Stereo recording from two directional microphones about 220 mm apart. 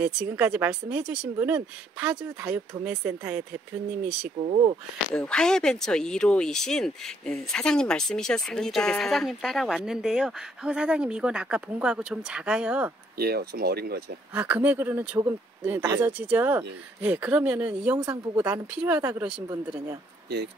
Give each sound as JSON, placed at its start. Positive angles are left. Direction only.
{"t": 0.0, "sound": "speech", "side_deg": -10}
{"t": 5.1, "sound": "speech", "side_deg": 5}
{"t": 13.2, "sound": "speech", "side_deg": -45}
{"t": 14.3, "sound": "speech", "side_deg": -5}